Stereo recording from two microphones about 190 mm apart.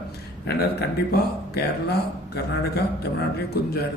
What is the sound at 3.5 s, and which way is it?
Speech, 55° left (ahead or behind).